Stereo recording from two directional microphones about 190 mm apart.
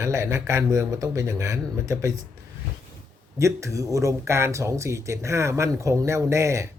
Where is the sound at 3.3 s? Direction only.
15° right (ahead or behind).